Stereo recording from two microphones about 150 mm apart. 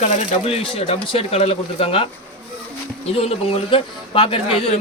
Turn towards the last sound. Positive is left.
turn(degrees=40)  # may be behind; listen again after turning